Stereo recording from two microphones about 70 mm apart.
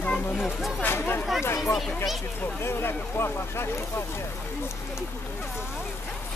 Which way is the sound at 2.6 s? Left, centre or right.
Left.